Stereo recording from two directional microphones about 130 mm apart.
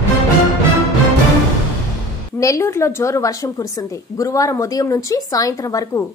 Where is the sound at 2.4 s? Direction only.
25° left (ahead or behind).